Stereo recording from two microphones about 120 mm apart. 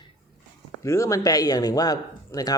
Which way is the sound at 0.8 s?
25° left (ahead or behind).